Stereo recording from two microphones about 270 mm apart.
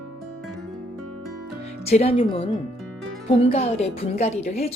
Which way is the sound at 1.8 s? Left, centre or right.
Left.